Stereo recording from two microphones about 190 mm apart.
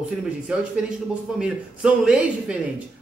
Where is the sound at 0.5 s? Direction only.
5° right (ahead or behind).